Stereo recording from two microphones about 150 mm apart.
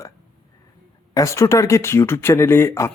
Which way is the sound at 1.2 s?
20° left (ahead or behind).